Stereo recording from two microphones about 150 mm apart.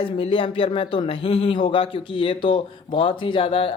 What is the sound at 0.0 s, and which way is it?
Speech, 35° left (ahead or behind).